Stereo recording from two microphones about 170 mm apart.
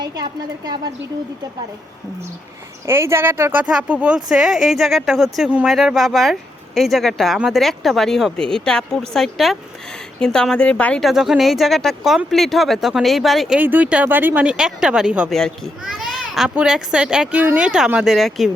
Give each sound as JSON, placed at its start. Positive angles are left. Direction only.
{"t": 0.0, "sound": "a woman's voice", "side_deg": -25}
{"t": 2.8, "sound": "speech", "side_deg": -15}